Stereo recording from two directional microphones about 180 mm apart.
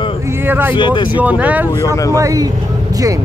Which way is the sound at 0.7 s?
25° left (ahead or behind).